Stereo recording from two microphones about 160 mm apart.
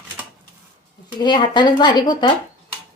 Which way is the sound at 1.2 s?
30° left (ahead or behind).